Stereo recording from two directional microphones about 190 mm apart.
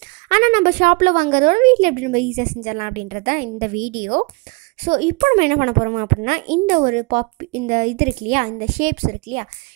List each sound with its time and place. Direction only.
0.3 s a woman's voice: 45° right (ahead or behind)